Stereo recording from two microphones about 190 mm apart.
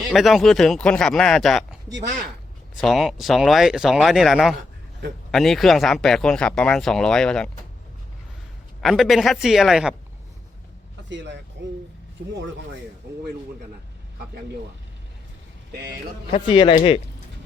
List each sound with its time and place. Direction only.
0.1 s speech: centre (ahead or behind)
2.8 s speech: centre (ahead or behind)
8.8 s speech: centre (ahead or behind)
11.1 s speech: 70° right (ahead or behind)
16.3 s speech: 25° left (ahead or behind)